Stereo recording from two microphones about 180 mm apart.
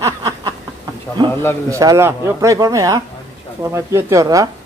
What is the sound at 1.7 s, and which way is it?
Speech, 15° right (ahead or behind).